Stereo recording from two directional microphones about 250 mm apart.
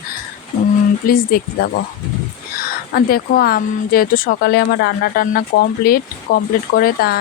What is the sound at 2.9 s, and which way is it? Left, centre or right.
Speech, left.